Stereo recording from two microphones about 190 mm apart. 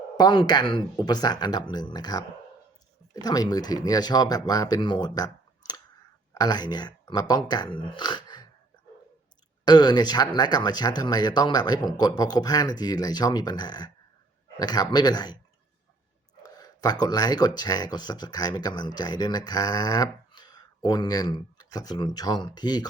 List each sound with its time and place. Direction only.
0.2 s speech: 25° left (ahead or behind)
9.6 s speech: 20° left (ahead or behind)
16.4 s speech: 20° left (ahead or behind)